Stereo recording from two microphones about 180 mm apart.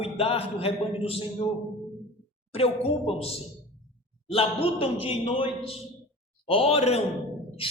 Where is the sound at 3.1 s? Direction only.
35° left (ahead or behind).